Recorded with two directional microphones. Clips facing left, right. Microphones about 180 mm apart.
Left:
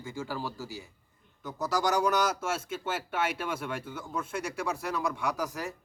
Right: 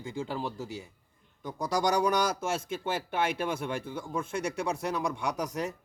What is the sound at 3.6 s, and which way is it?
A man's voice, 30° right (ahead or behind).